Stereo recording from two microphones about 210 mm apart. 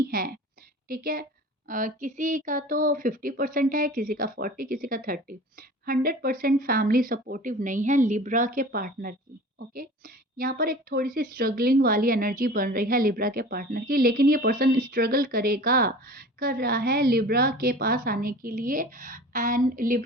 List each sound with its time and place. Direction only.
0.9 s a woman's voice: 45° right (ahead or behind)